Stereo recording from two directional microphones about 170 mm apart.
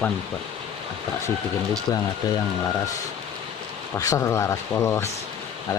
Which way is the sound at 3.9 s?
20° left (ahead or behind).